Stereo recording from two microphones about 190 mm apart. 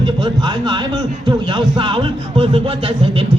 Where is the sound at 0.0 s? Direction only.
25° right (ahead or behind).